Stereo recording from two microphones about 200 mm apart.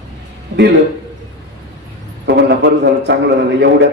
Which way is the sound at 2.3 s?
55° right (ahead or behind).